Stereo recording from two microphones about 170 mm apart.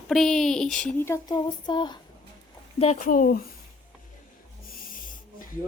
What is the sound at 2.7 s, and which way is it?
Speech, 40° left (ahead or behind).